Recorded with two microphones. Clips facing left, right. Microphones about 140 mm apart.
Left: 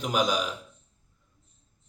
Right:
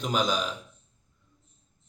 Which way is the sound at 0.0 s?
10° left (ahead or behind).